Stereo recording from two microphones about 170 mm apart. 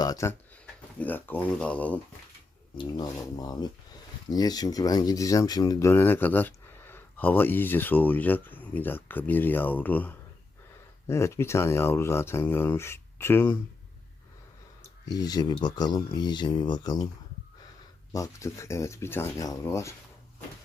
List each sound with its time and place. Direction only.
0.0 s speech: 20° left (ahead or behind)
2.7 s speech: 25° left (ahead or behind)
15.0 s speech: 20° left (ahead or behind)
18.1 s speech: 20° left (ahead or behind)